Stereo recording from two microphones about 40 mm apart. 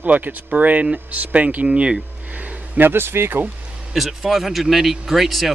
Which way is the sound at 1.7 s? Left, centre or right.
Right.